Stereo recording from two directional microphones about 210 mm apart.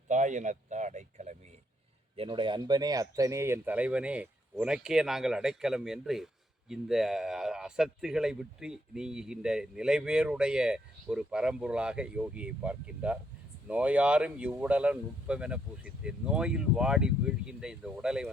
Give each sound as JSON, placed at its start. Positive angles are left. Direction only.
{"t": 0.1, "sound": "speech", "side_deg": -35}